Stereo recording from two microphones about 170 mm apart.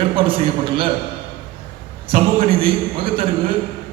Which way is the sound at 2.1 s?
30° right (ahead or behind).